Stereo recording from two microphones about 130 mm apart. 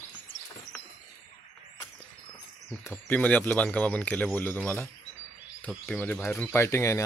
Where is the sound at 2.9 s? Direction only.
10° left (ahead or behind).